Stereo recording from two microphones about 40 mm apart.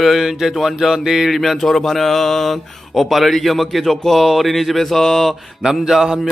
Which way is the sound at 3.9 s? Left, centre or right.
Centre.